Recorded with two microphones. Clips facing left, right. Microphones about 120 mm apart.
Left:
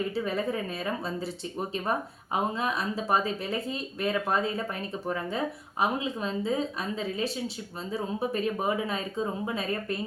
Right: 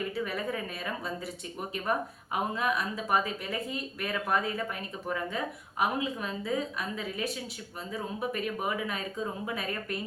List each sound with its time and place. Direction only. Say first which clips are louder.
0.1 s speech: left 4 dB; 30° left (ahead or behind)
2.3 s speech: left 1 dB; 25° left (ahead or behind)
5.8 s speech: left 2 dB; 25° left (ahead or behind)